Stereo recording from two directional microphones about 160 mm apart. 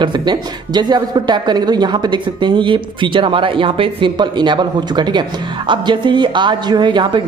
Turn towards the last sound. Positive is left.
turn(degrees=-30)  # may be behind; listen again after turning